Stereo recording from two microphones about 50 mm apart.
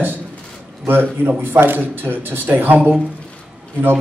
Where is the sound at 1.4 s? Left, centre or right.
Right.